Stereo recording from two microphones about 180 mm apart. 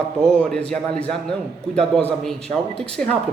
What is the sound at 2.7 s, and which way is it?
Speech, 5° left (ahead or behind).